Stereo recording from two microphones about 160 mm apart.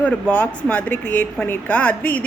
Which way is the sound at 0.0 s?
10° left (ahead or behind).